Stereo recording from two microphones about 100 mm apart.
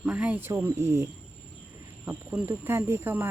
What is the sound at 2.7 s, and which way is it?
Speech, 25° right (ahead or behind).